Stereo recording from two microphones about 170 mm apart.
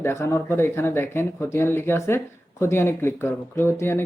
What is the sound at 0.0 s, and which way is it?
Speech, 15° left (ahead or behind).